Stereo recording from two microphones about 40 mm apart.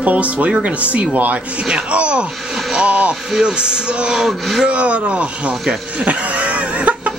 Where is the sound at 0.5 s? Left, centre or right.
Right.